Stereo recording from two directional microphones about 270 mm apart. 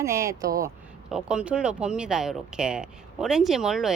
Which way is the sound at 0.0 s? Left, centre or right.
Centre.